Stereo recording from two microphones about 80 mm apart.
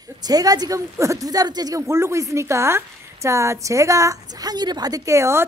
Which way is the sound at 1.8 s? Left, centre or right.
Right.